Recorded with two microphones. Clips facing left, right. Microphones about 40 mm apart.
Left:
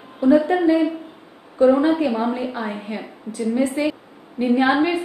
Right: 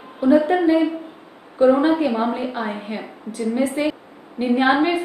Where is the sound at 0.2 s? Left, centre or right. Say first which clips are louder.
Even; centre.